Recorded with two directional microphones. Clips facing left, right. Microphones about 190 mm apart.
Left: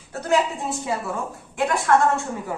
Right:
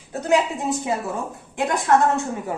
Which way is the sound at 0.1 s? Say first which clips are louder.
Right 3 dB; 15° right (ahead or behind).